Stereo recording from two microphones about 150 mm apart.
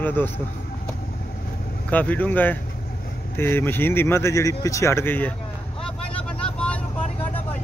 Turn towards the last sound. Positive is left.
turn(degrees=5)  # may be behind; listen again after turning